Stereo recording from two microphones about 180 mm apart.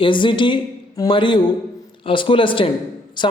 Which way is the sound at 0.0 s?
25° left (ahead or behind).